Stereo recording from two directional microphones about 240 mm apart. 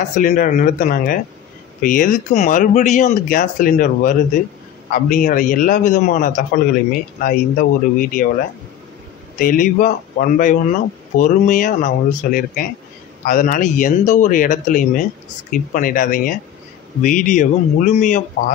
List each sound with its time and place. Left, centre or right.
0.2 s speech: left
9.4 s speech: left